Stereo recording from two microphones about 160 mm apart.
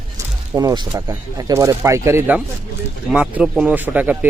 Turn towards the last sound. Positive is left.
turn(degrees=-10)  # may be behind; listen again after turning